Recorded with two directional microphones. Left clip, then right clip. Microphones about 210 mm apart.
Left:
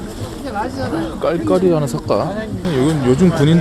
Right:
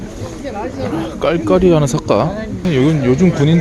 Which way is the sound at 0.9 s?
20° right (ahead or behind).